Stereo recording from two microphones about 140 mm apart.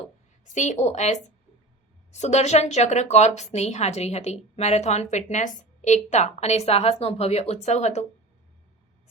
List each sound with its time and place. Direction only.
0.4 s a woman's voice: 60° left (ahead or behind)